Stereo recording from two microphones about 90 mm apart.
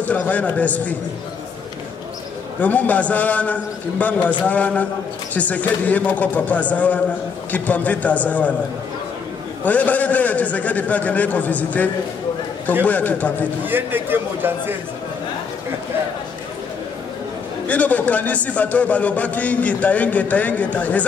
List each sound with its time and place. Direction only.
0.0 s a man's voice: 15° left (ahead or behind)
2.6 s a man's voice: 15° left (ahead or behind)
9.7 s a man's voice: 15° left (ahead or behind)
13.7 s a man's voice: 25° right (ahead or behind)
17.6 s a man's voice: 15° left (ahead or behind)